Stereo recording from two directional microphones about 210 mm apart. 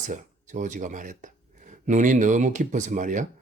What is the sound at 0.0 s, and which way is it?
Speech, 35° right (ahead or behind).